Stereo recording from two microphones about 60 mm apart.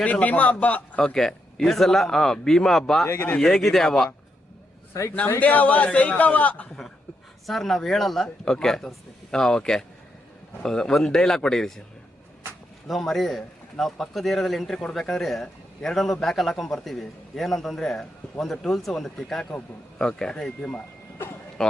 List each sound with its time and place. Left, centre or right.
0.0 s a man's voice: left
0.9 s speech: centre
3.1 s speech: left
3.3 s speech: centre
5.4 s a man's voice: left
7.4 s speech: centre
12.9 s a man's voice: centre